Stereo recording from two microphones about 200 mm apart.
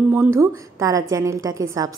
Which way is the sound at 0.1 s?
10° right (ahead or behind).